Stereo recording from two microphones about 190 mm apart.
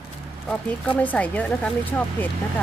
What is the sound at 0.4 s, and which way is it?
Speech, 5° left (ahead or behind).